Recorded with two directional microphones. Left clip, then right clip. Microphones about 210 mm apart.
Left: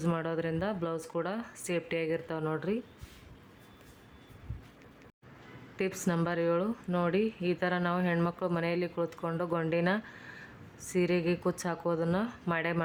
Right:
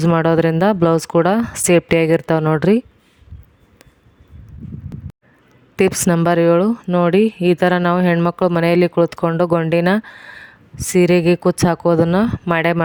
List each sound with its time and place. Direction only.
0.0 s speech: 45° right (ahead or behind)
5.7 s speech: 50° right (ahead or behind)